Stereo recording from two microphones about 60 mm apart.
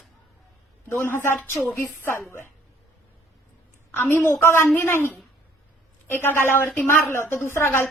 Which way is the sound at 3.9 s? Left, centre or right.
Left.